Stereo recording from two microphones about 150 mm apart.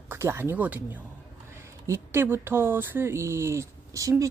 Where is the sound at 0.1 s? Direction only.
15° right (ahead or behind).